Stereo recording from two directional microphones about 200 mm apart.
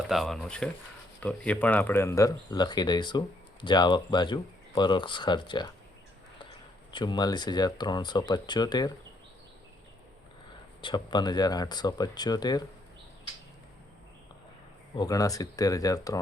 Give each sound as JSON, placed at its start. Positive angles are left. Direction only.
{"t": 0.1, "sound": "speech", "side_deg": 0}
{"t": 6.9, "sound": "speech", "side_deg": 20}
{"t": 10.8, "sound": "speech", "side_deg": 25}
{"t": 14.9, "sound": "speech", "side_deg": 20}